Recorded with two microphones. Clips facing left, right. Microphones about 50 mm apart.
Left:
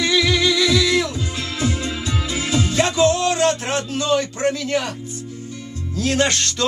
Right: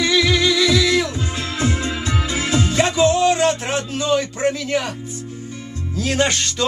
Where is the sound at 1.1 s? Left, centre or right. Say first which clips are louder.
Right 2 dB; right.